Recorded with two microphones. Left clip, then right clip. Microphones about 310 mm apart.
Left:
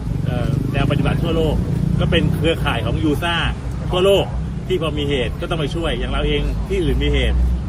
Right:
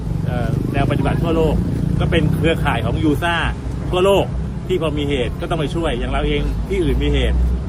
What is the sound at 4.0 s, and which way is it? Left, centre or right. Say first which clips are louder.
Speech: even; centre.